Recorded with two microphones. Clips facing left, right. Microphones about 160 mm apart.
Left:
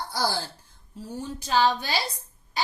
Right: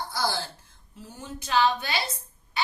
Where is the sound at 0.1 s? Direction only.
35° left (ahead or behind).